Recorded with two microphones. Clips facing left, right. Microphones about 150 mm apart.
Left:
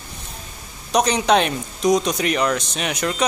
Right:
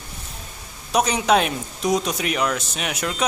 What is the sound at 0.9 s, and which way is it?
Speech, 5° right (ahead or behind).